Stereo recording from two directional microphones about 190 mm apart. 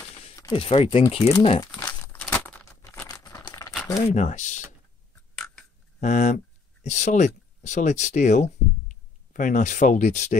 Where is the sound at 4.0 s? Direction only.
35° left (ahead or behind).